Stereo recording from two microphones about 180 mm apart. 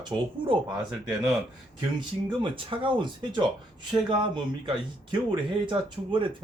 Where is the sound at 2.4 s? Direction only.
30° right (ahead or behind).